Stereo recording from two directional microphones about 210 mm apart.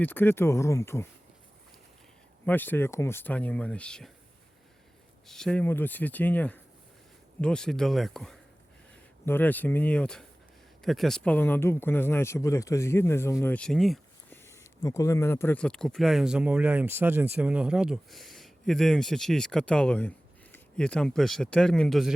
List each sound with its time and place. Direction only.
0.0 s speech: 10° left (ahead or behind)
2.5 s speech: 10° left (ahead or behind)
5.3 s speech: 5° left (ahead or behind)
14.4 s speech: 15° left (ahead or behind)